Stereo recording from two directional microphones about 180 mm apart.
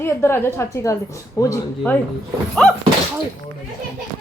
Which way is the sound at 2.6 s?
5° left (ahead or behind).